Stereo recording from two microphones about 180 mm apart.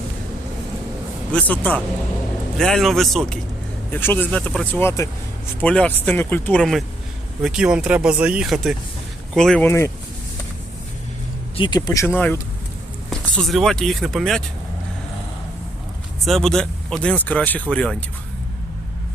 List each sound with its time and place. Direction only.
1.3 s speech: 10° left (ahead or behind)
11.5 s speech: 25° left (ahead or behind); by 14.4 s centre (ahead or behind)
16.2 s speech: centre (ahead or behind)